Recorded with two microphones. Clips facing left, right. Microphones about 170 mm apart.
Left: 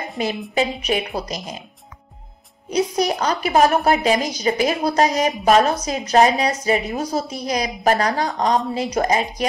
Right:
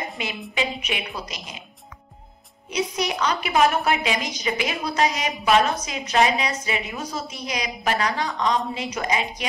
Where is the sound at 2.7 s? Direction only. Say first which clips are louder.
Left 6 dB; 40° left (ahead or behind).